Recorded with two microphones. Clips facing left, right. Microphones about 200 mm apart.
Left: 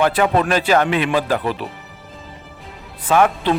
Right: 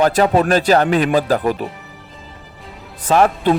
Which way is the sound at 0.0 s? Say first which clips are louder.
Right 2 dB; 40° right (ahead or behind).